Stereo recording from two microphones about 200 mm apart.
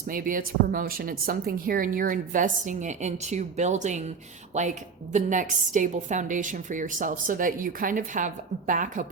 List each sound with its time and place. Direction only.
0.1 s speech: 45° right (ahead or behind)
5.1 s a woman's voice: 40° right (ahead or behind)